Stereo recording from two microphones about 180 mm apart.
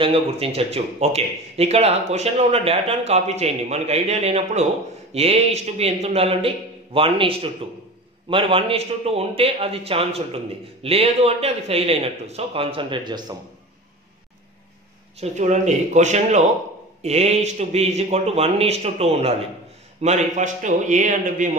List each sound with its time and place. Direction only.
0.0 s a man's voice: 30° right (ahead or behind)
15.1 s a man's voice: 40° right (ahead or behind)